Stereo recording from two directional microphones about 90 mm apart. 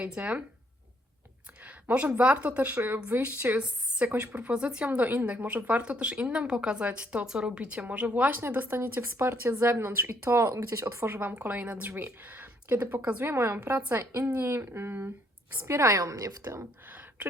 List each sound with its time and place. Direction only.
0.0 s speech: 15° right (ahead or behind)
1.6 s speech: 15° right (ahead or behind)
13.2 s a woman's voice: 30° right (ahead or behind)
17.2 s a sound: 15° right (ahead or behind)